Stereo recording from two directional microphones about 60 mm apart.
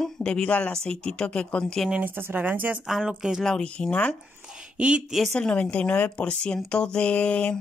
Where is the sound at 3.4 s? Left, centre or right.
Centre.